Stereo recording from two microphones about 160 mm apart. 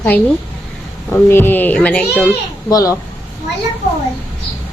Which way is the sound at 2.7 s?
20° left (ahead or behind).